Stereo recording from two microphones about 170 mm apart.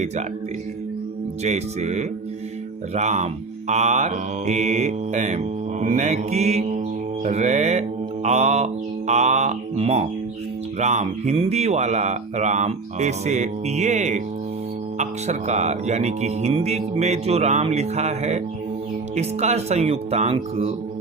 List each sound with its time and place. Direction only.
1.5 s music: 40° right (ahead or behind)
3.7 s speech: 45° right (ahead or behind)
7.3 s mantra: 40° right (ahead or behind)
10.8 s speech: 45° right (ahead or behind)
14.9 s music: 45° right (ahead or behind)